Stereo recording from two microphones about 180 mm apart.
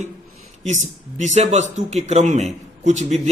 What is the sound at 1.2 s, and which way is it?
A man's voice, 40° right (ahead or behind).